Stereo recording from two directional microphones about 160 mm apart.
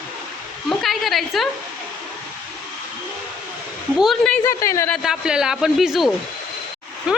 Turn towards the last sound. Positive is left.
turn(degrees=-5)  # may be behind; listen again after turning